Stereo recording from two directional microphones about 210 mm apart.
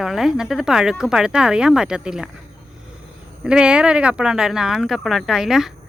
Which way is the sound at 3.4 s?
5° right (ahead or behind).